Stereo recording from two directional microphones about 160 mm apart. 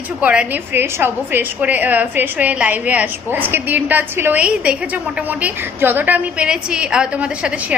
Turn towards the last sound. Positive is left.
turn(degrees=-5)  # may be behind; listen again after turning